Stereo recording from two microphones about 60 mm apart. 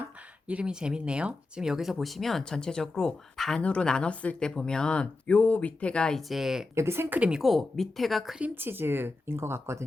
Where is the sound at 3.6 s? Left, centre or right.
Centre.